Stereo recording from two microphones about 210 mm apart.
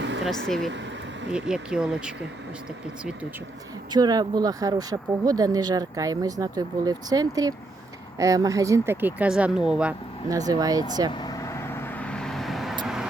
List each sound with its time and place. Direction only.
0.0 s vehicle: 60° right (ahead or behind)
0.3 s speech: centre (ahead or behind)
3.9 s speech: 20° right (ahead or behind); by 9.9 s 5° right (ahead or behind)
10.2 s speech: 15° right (ahead or behind)
11.1 s vehicle: 20° left (ahead or behind); by 13.1 s centre (ahead or behind)